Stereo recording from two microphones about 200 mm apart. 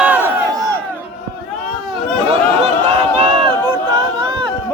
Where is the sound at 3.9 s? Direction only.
25° right (ahead or behind).